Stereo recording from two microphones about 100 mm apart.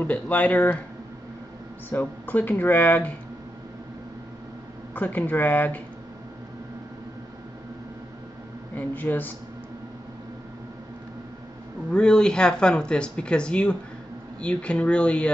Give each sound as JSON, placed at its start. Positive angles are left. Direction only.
{"t": 0.0, "sound": "speech", "side_deg": 15}
{"t": 1.9, "sound": "speech", "side_deg": 15}
{"t": 4.9, "sound": "speech", "side_deg": 15}
{"t": 8.7, "sound": "speech", "side_deg": 20}
{"t": 11.9, "sound": "speech", "side_deg": 10}